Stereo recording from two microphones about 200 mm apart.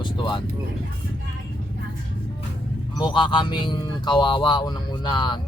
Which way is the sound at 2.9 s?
25° left (ahead or behind).